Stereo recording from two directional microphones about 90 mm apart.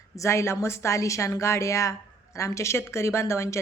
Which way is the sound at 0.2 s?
30° left (ahead or behind).